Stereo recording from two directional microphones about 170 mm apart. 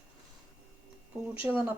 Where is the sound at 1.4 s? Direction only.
10° right (ahead or behind).